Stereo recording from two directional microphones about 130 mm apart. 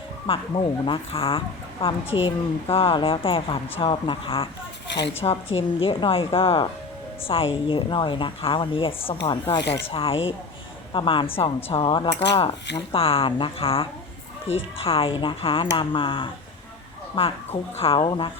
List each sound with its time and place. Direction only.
0.3 s speech: 45° left (ahead or behind)
12.4 s speech: 45° left (ahead or behind)